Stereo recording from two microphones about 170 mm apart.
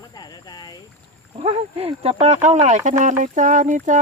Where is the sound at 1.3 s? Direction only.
35° right (ahead or behind).